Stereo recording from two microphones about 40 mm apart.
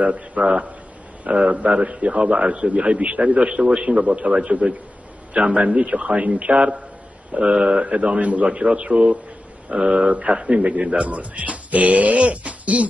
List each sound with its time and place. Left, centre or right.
0.0 s speech: right
1.7 s a man's voice: right
7.5 s a man's voice: centre
7.8 s speech: right
10.3 s a man's voice: right
10.6 s speech: right